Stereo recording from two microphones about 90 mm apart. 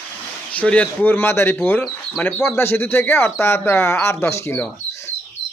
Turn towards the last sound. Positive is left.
turn(degrees=30)  # may be behind; listen again after turning